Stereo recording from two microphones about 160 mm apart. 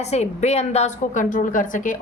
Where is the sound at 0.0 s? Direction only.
45° left (ahead or behind).